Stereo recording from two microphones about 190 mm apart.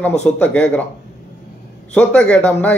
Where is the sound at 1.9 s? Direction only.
5° left (ahead or behind).